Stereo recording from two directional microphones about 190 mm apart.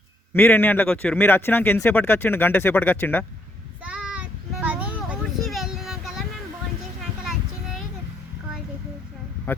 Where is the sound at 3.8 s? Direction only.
5° right (ahead or behind).